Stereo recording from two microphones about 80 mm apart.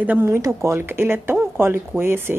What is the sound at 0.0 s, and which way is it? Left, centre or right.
Speech, centre.